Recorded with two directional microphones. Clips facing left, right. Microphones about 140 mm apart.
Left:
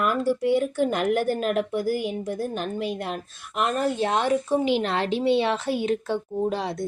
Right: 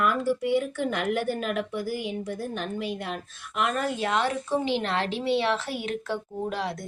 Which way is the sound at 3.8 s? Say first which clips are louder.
Left 5 dB; 25° left (ahead or behind).